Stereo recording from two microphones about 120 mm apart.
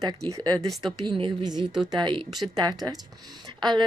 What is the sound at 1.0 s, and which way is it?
Speech, 40° right (ahead or behind).